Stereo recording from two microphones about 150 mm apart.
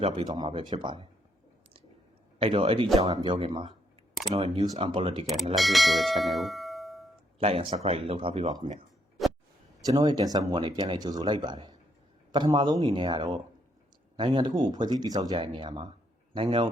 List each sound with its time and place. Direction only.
0.3 s speech: 30° right (ahead or behind)
2.4 s speech: 40° right (ahead or behind)
5.2 s speech: centre (ahead or behind)
5.5 s bell: centre (ahead or behind)
7.3 s speech: 40° right (ahead or behind)
9.8 s speech: 25° right (ahead or behind)